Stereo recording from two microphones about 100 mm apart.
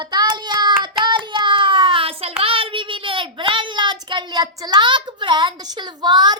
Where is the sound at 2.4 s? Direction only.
65° right (ahead or behind).